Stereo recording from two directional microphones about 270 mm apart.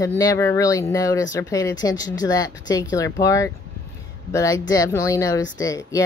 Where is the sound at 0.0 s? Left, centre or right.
Centre.